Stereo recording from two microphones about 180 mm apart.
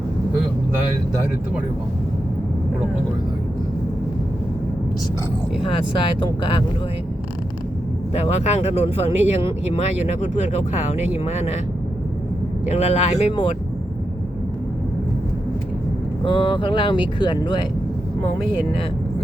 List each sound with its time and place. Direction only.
6.4 s speech: 25° left (ahead or behind)
8.1 s speech: 40° left (ahead or behind)
12.7 s speech: 35° left (ahead or behind)
16.2 s speech: 30° left (ahead or behind)